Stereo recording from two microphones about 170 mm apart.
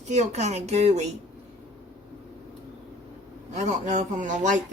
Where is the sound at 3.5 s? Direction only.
45° right (ahead or behind).